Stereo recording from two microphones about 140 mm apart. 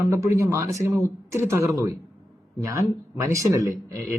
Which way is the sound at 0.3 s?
20° right (ahead or behind).